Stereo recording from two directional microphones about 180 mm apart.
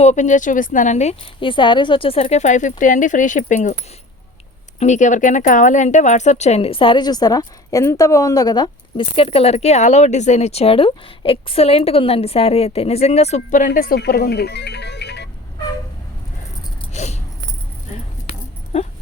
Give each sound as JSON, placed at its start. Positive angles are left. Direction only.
{"t": 0.0, "sound": "a woman's voice", "side_deg": 40}
{"t": 4.8, "sound": "speech", "side_deg": 40}
{"t": 16.9, "sound": "a sound", "side_deg": 40}
{"t": 17.9, "sound": "keys jangling", "side_deg": 35}